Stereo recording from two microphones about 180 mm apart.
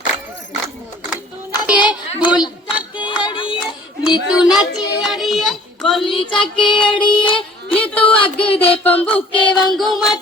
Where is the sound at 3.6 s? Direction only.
5° right (ahead or behind).